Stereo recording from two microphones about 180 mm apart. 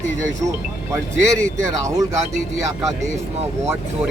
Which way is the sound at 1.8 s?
20° right (ahead or behind).